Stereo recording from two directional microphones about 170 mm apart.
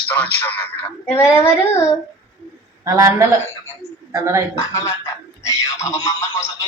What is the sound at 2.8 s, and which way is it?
A man's voice, 15° right (ahead or behind).